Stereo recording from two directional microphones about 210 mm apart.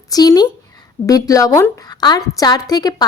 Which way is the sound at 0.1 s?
20° left (ahead or behind).